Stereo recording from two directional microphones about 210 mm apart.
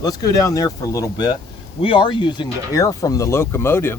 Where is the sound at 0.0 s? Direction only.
15° left (ahead or behind).